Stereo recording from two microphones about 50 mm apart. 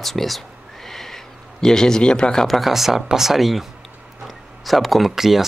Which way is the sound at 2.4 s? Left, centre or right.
Centre.